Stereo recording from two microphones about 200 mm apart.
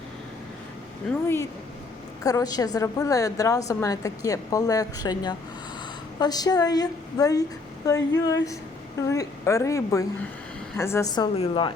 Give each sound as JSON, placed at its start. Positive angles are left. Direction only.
{"t": 1.1, "sound": "speech", "side_deg": 0}
{"t": 2.2, "sound": "a woman's voice", "side_deg": 20}